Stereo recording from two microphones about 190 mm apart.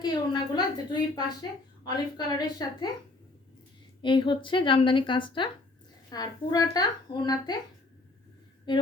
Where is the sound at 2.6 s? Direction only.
20° left (ahead or behind).